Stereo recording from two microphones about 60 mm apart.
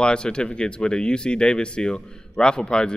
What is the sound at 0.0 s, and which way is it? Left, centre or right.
A man's voice, centre.